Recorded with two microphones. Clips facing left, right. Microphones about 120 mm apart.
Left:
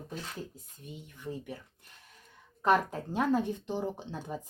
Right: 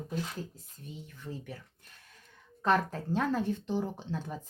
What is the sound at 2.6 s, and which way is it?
Speech, 10° left (ahead or behind).